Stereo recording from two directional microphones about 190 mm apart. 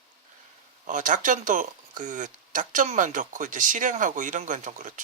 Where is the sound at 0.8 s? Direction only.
40° right (ahead or behind).